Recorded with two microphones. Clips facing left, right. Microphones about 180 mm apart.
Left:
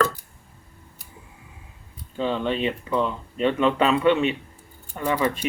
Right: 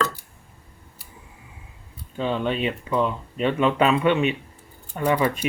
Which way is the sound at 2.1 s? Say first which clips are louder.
Even; 5° right (ahead or behind).